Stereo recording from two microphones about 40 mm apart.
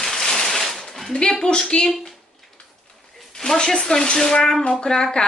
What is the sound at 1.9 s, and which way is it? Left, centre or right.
Speech, centre.